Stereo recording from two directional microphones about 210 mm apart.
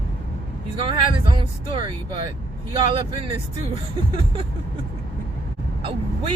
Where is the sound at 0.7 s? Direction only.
25° right (ahead or behind).